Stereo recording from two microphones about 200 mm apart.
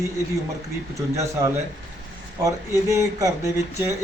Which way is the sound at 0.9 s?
15° right (ahead or behind).